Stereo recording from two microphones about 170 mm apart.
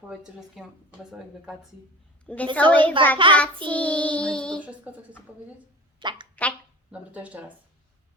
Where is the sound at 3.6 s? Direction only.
10° left (ahead or behind).